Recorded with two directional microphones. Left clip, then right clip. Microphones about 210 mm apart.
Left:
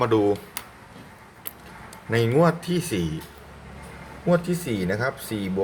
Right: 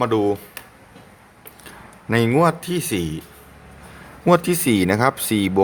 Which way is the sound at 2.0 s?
30° right (ahead or behind).